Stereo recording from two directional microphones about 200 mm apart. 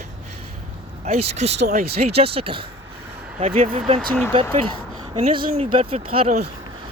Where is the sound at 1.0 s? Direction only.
30° right (ahead or behind).